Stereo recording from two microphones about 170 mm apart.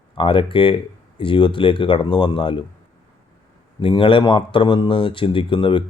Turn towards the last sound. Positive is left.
turn(degrees=30)  # may be behind; listen again after turning